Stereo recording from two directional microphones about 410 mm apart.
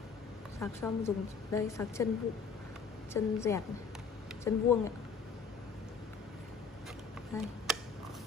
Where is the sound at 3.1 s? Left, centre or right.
Centre.